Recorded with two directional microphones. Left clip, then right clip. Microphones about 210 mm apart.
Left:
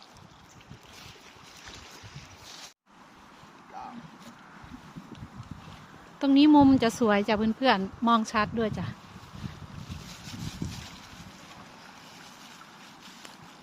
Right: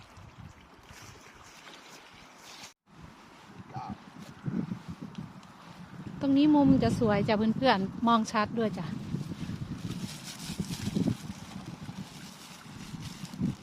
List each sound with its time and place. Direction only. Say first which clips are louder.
6.1 s a woman's voice: left 5 dB; 20° left (ahead or behind); by 9.0 s centre (ahead or behind)
10.2 s vehicle: left 2 dB; 50° right (ahead or behind)